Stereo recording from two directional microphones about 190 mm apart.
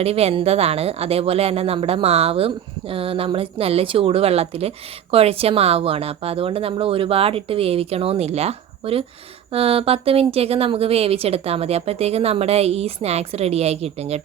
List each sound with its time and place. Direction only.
0.0 s speech: 30° right (ahead or behind)